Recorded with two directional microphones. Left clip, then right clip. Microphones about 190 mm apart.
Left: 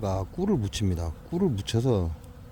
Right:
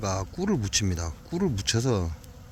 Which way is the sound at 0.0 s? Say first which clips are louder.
Even; 10° left (ahead or behind).